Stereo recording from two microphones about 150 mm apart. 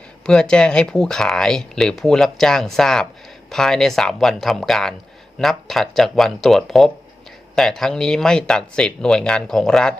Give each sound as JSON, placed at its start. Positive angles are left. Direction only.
{"t": 0.3, "sound": "speech", "side_deg": 5}